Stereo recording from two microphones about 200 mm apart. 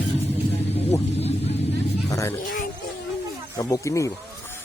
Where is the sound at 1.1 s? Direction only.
30° left (ahead or behind).